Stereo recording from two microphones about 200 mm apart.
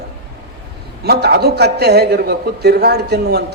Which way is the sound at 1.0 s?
55° right (ahead or behind).